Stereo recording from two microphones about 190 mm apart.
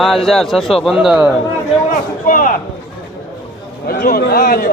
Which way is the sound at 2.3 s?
45° left (ahead or behind).